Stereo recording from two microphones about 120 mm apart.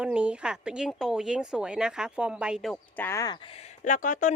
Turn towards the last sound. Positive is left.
turn(degrees=90)